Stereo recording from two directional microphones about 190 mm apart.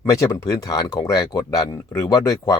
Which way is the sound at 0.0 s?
15° left (ahead or behind).